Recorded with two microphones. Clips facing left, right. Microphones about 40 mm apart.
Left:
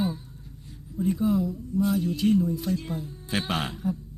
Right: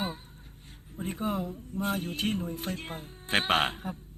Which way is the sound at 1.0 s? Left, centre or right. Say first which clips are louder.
Left 7 dB; right.